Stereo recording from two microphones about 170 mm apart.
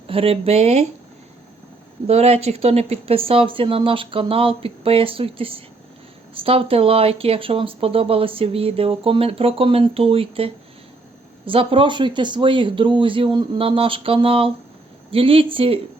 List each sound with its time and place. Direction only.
0.1 s speech: 35° right (ahead or behind)
2.0 s speech: 35° right (ahead or behind)